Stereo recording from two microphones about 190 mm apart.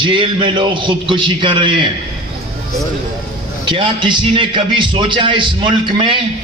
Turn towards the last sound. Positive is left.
turn(degrees=-25)  # may be behind; listen again after turning